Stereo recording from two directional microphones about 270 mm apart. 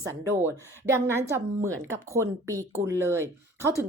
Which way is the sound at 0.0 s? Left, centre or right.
Centre.